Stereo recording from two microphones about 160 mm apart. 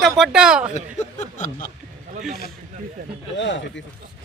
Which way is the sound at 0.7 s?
45° left (ahead or behind).